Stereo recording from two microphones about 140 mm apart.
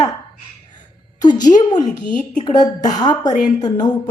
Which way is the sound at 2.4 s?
30° left (ahead or behind).